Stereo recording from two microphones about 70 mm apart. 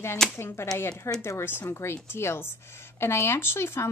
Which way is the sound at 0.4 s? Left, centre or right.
Left.